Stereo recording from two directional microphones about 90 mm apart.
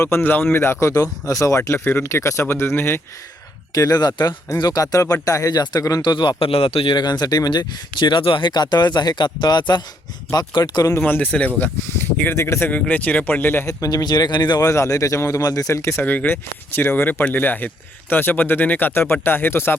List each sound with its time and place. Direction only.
0.0 s speech: 25° left (ahead or behind)
3.8 s speech: 45° left (ahead or behind)
6.0 s a man's voice: 60° left (ahead or behind); by 6.9 s 90° left
6.9 s speech: 50° left (ahead or behind)
11.0 s speech: 20° left (ahead or behind)
13.7 s speech: 40° left (ahead or behind)
14.6 s speech: 35° left (ahead or behind)
16.0 s speech: 20° left (ahead or behind)